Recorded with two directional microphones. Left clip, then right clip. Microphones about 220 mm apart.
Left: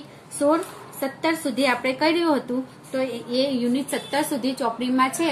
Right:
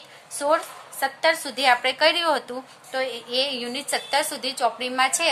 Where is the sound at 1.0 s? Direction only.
45° right (ahead or behind).